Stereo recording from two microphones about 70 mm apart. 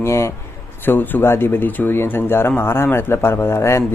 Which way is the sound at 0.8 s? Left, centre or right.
Left.